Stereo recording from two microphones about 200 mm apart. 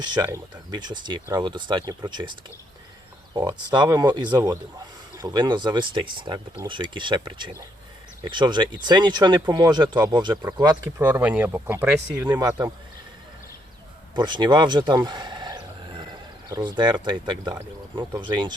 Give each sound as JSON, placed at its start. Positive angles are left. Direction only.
{"t": 0.0, "sound": "speech", "side_deg": -20}
{"t": 3.3, "sound": "speech", "side_deg": -20}
{"t": 14.2, "sound": "a sound", "side_deg": -20}
{"t": 16.5, "sound": "speech", "side_deg": -20}